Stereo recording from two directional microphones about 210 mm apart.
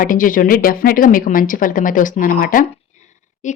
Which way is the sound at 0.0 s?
40° left (ahead or behind).